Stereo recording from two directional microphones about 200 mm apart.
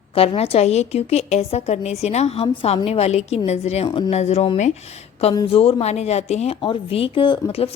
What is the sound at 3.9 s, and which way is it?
Speech, 20° left (ahead or behind).